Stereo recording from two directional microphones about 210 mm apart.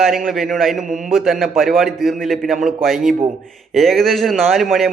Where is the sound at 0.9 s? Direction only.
40° right (ahead or behind).